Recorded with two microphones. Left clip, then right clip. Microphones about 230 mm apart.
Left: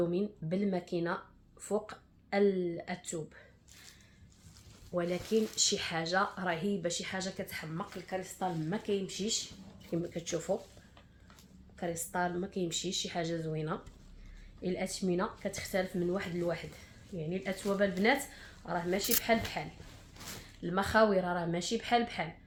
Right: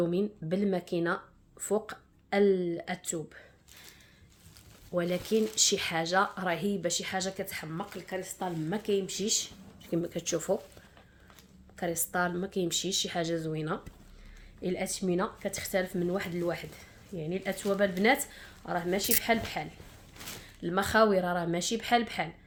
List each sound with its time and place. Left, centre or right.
0.1 s speech: right
4.9 s speech: right
11.8 s speech: right
20.6 s speech: right